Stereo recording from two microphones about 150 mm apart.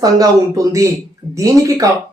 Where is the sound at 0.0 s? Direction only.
25° right (ahead or behind).